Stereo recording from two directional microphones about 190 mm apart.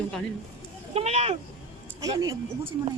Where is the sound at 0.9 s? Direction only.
35° right (ahead or behind).